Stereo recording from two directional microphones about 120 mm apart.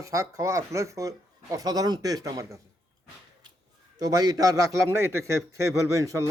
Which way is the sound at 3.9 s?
30° right (ahead or behind).